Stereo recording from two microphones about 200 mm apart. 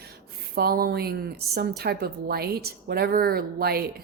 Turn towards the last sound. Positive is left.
turn(degrees=-50)  # may be behind; listen again after turning